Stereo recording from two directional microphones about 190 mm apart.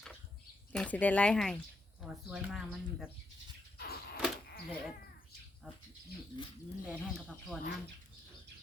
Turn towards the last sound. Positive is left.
turn(degrees=0)  # may be behind; listen again after turning